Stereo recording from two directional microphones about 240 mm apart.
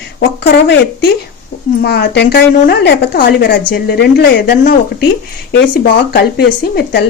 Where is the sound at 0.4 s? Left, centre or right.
Left.